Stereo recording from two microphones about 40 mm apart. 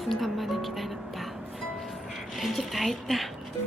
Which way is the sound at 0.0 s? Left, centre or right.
Centre.